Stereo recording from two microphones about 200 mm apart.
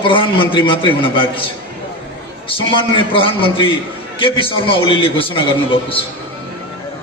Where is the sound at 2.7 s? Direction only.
25° left (ahead or behind).